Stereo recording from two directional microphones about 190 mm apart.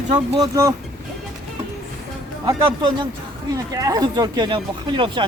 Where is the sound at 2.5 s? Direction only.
25° right (ahead or behind).